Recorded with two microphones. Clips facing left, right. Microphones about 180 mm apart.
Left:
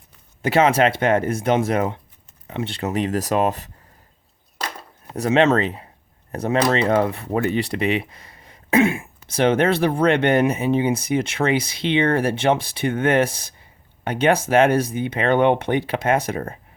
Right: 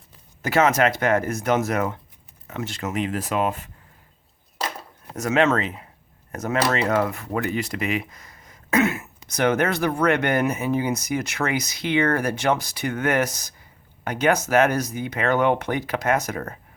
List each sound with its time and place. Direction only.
0.4 s speech: 30° left (ahead or behind)
5.1 s speech: 30° left (ahead or behind)